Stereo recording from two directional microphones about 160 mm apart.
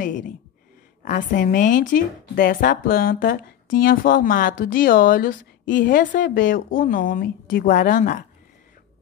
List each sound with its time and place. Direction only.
1.0 s speech: 55° left (ahead or behind)